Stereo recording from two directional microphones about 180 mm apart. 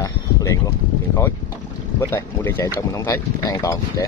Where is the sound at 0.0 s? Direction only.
20° left (ahead or behind).